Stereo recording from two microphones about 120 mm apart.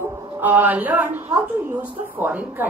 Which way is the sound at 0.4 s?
15° right (ahead or behind).